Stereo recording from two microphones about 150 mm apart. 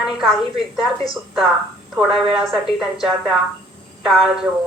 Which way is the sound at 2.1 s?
40° right (ahead or behind).